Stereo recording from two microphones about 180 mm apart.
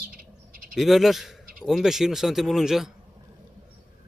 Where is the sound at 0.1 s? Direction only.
55° right (ahead or behind).